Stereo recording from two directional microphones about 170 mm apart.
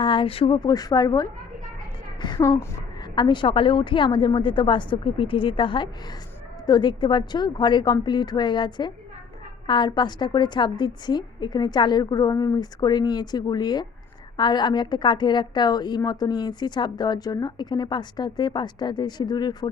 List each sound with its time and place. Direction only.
0.0 s a woman's voice: 30° left (ahead or behind)